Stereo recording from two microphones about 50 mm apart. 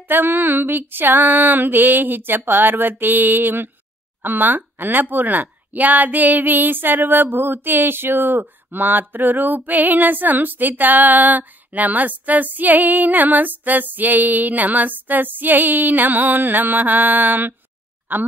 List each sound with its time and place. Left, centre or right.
0.1 s speech: right